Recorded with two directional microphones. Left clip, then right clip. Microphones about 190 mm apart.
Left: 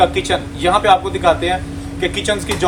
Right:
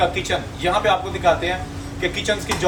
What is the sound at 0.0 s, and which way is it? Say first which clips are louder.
A man's voice: left 6 dB; 10° left (ahead or behind).